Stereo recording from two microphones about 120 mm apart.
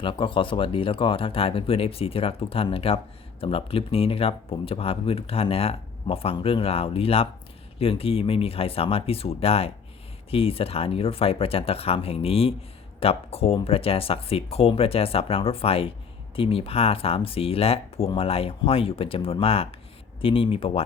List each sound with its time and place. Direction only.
0.0 s speech: 45° left (ahead or behind)